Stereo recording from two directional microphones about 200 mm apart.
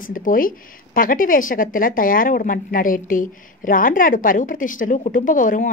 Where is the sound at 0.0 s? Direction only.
45° left (ahead or behind).